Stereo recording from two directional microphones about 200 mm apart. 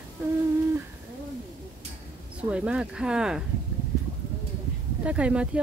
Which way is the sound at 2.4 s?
5° right (ahead or behind).